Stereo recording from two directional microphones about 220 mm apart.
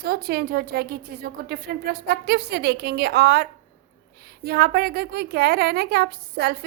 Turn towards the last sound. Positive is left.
turn(degrees=-45)  # may be behind; listen again after turning